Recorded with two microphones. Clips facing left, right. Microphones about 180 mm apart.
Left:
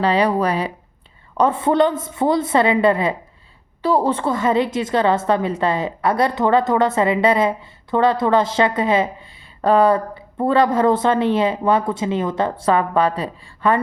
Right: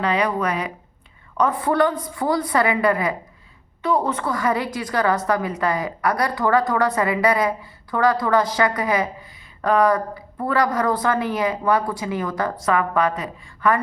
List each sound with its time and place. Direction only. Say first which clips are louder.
0.0 s a woman's voice: left 4 dB; 30° left (ahead or behind)